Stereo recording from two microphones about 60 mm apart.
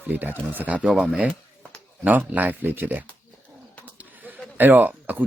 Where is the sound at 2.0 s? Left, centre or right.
Right.